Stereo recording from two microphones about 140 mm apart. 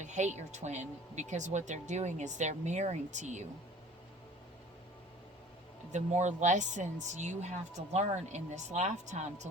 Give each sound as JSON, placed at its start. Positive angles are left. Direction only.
{"t": 0.0, "sound": "speech", "side_deg": -60}
{"t": 5.9, "sound": "speech", "side_deg": -60}